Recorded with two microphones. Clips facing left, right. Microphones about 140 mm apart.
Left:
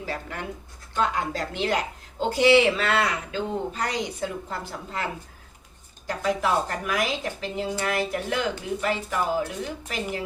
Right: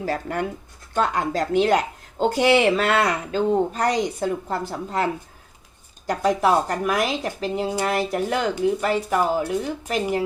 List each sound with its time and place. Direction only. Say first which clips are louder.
0.0 s speech: right 7 dB; 50° right (ahead or behind)
6.1 s speech: right 5 dB; 40° right (ahead or behind)